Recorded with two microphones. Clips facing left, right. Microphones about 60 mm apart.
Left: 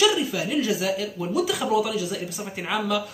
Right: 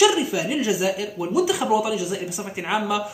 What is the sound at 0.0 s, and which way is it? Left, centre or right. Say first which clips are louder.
A man's voice: right 3 dB; centre.